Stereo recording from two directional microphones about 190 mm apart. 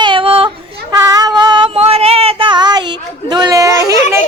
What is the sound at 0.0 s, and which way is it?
Female singing, 25° right (ahead or behind).